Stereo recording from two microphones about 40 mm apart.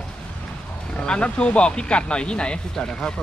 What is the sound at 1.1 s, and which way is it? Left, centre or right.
Speech, left.